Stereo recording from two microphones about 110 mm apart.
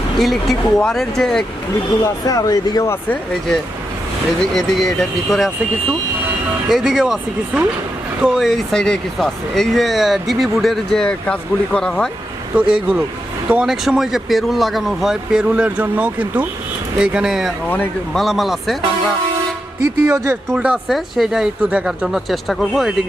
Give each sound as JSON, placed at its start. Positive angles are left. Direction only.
{"t": 0.2, "sound": "speech", "side_deg": 0}
{"t": 2.0, "sound": "speech", "side_deg": 35}
{"t": 4.4, "sound": "speech", "side_deg": 0}
{"t": 6.7, "sound": "speech", "side_deg": -5}
{"t": 12.5, "sound": "speech", "side_deg": -10}
{"t": 19.8, "sound": "speech", "side_deg": -30}
{"t": 20.6, "sound": "speech", "side_deg": -5}